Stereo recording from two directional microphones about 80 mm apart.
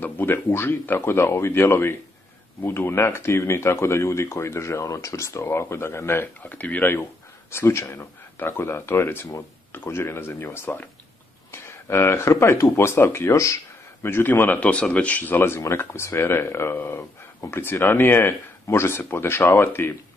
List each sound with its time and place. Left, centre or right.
0.0 s speech: left
14.0 s speech: left